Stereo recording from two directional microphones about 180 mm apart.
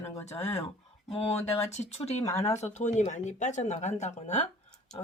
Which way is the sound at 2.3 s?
15° left (ahead or behind).